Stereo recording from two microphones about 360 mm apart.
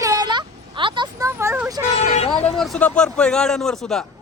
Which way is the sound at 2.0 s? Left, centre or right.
Centre.